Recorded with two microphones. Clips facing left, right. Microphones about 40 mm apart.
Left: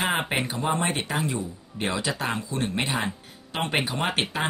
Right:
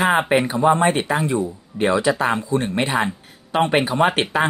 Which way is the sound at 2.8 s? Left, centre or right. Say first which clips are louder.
Right 6 dB; right.